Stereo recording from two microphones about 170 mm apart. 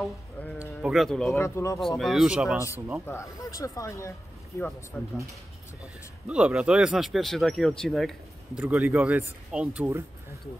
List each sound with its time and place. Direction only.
0.6 s speech: 5° right (ahead or behind)
1.3 s speech: 15° left (ahead or behind)
1.8 s speech: centre (ahead or behind)
3.1 s speech: 15° left (ahead or behind)
6.2 s speech: 5° right (ahead or behind)